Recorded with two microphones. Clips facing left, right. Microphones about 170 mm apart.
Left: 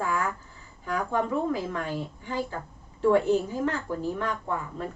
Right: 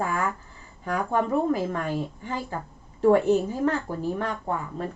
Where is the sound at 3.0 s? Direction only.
45° right (ahead or behind).